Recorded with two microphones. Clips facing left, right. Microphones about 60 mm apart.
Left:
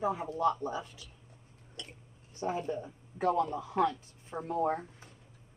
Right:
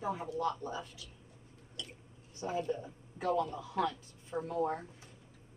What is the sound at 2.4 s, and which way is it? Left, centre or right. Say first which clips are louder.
Speech: left 2 dB; left.